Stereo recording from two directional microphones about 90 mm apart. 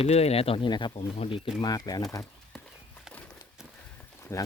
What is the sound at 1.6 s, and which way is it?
Speech, 45° left (ahead or behind).